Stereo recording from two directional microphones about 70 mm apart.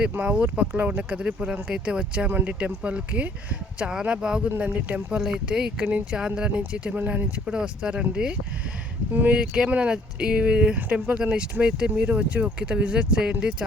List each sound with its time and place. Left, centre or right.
0.0 s speech: centre
4.4 s speech: right
7.4 s speech: centre
9.1 s speech: right